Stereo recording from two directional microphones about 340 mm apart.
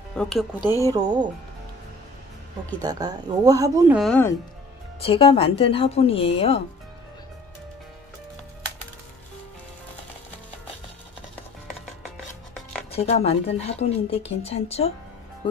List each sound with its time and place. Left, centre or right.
0.1 s speech: centre
0.8 s speech: centre
2.8 s speech: centre
5.0 s speech: centre
12.9 s speech: centre